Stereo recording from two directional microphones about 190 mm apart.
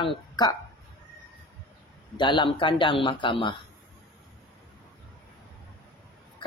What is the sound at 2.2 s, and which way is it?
Speech, 25° left (ahead or behind).